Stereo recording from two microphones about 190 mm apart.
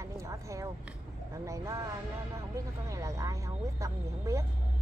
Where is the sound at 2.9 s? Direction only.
15° right (ahead or behind).